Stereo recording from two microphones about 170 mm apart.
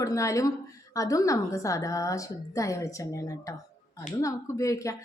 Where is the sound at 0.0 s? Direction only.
20° left (ahead or behind).